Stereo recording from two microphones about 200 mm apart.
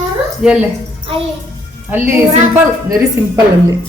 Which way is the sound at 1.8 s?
10° right (ahead or behind).